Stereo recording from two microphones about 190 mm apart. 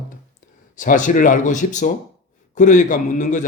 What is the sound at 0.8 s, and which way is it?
A man's voice, 40° left (ahead or behind).